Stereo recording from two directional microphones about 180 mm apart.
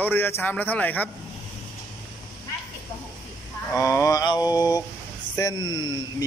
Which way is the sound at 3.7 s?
15° left (ahead or behind).